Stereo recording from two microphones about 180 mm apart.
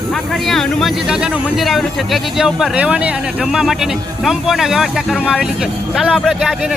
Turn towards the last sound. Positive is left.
turn(degrees=-5)  # may be behind; listen again after turning